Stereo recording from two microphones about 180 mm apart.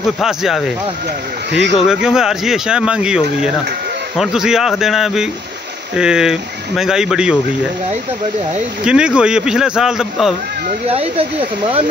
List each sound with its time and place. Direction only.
0.0 s speech: centre (ahead or behind)
1.5 s speech: 80° right
1.9 s speech: 5° right (ahead or behind)
8.8 s speech: 5° right (ahead or behind)
10.9 s speech: 35° right (ahead or behind)